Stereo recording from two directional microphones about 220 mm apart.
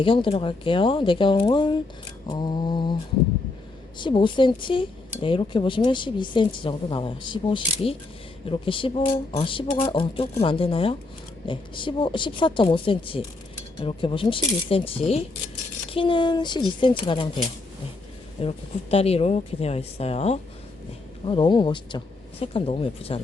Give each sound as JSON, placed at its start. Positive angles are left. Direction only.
{"t": 0.0, "sound": "a woman's voice", "side_deg": 25}
{"t": 3.9, "sound": "a woman's voice", "side_deg": 20}